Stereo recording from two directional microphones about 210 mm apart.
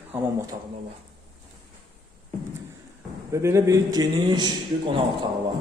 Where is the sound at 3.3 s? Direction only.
15° right (ahead or behind).